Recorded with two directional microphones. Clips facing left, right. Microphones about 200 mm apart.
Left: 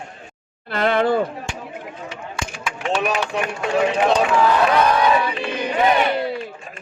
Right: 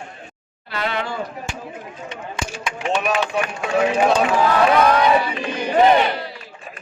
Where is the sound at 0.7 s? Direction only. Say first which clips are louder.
Left 7 dB; 50° left (ahead or behind).